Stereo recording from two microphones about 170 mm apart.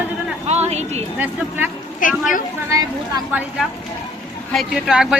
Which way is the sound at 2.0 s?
50° left (ahead or behind).